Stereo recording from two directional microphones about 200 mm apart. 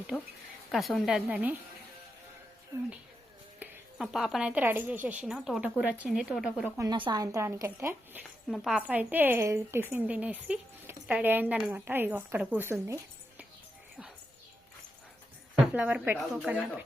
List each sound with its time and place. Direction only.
0.7 s a woman's voice: centre (ahead or behind)
3.6 s a woman's voice: centre (ahead or behind)
6.7 s speech: 20° right (ahead or behind)
8.4 s speech: centre (ahead or behind)
15.6 s speech: 10° right (ahead or behind)